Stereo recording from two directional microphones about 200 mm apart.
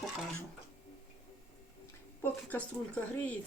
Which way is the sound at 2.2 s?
5° left (ahead or behind).